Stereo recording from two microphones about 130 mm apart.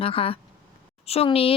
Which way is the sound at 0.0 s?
45° left (ahead or behind).